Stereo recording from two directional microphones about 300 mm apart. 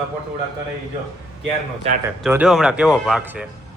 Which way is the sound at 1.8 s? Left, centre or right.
Right.